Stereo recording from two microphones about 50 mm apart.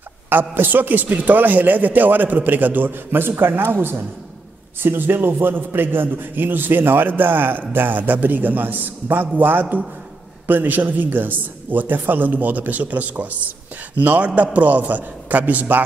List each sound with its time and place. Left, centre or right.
0.3 s a man's voice: right